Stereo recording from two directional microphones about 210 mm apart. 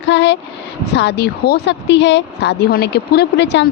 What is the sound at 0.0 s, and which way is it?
Speech, 60° left (ahead or behind).